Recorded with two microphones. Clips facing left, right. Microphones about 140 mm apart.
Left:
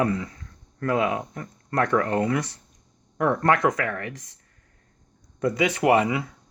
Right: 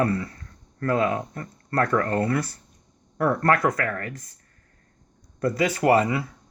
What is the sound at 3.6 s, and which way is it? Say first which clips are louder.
Speech: left 1 dB; 15° left (ahead or behind).